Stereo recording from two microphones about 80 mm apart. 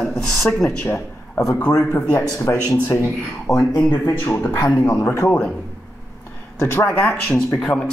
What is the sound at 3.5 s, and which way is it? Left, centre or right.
Speech, left.